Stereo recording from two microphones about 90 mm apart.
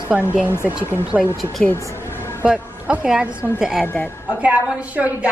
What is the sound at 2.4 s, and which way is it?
A woman's voice, 15° right (ahead or behind).